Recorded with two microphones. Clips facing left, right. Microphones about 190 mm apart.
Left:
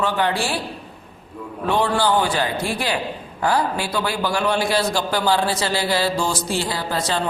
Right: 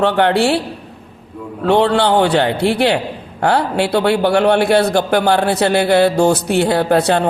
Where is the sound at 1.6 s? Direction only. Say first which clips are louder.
Right 7 dB; 65° right (ahead or behind).